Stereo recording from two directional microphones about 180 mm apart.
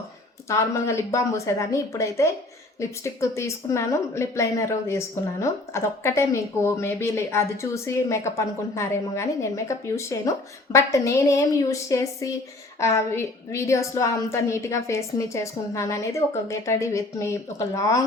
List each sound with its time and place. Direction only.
0.4 s speech: 15° left (ahead or behind)